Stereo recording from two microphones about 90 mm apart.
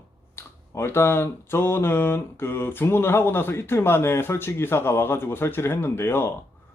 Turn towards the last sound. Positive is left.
turn(degrees=25)  # may be behind; listen again after turning